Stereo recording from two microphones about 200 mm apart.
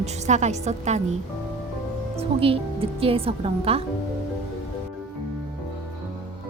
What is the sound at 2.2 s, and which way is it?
A woman's voice, 30° right (ahead or behind).